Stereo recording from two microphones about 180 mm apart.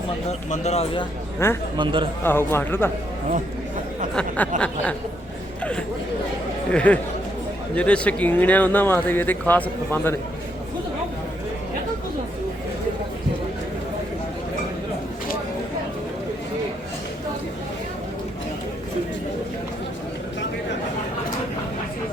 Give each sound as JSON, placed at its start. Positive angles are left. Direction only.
{"t": 0.3, "sound": "speech", "side_deg": 35}
{"t": 1.7, "sound": "a man's voice", "side_deg": -25}
{"t": 2.2, "sound": "speech", "side_deg": 10}
{"t": 4.1, "sound": "speech", "side_deg": 5}
{"t": 6.7, "sound": "speech", "side_deg": 5}